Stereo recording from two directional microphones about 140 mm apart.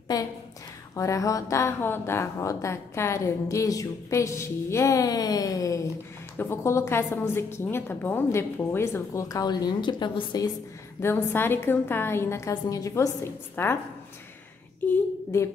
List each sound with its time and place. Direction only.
0.1 s speech: 25° left (ahead or behind)
11.0 s a woman's voice: 15° left (ahead or behind)
14.8 s a woman's voice: 10° left (ahead or behind)